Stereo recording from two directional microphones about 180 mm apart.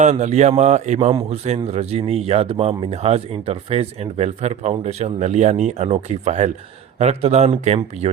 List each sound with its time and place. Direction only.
0.0 s speech: 40° right (ahead or behind)